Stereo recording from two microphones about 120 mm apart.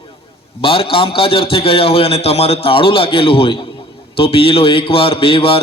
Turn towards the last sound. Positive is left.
turn(degrees=50)  # may be behind; listen again after turning